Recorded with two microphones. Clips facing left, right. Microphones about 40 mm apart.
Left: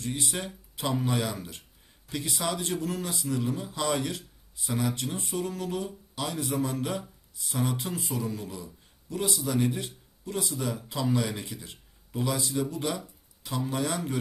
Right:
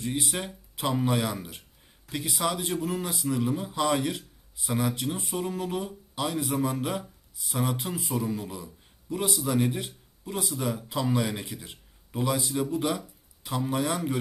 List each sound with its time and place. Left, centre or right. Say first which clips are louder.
0.0 s a man's voice: right 2 dB; centre